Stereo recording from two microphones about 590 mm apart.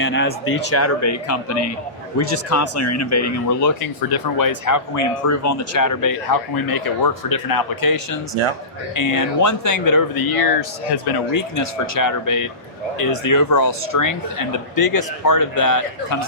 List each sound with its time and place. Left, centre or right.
0.0 s speech: centre